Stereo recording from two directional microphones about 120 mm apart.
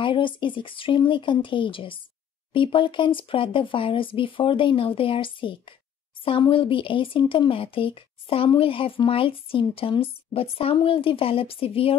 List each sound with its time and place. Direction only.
0.0 s speech: 45° left (ahead or behind)